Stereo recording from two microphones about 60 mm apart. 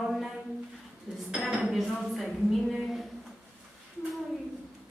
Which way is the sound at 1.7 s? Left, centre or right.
Centre.